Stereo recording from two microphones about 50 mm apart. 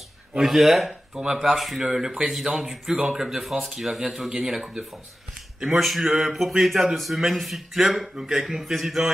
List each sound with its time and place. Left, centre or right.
0.4 s speech: centre